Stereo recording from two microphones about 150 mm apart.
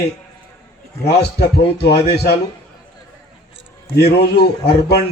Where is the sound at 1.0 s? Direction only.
90° left.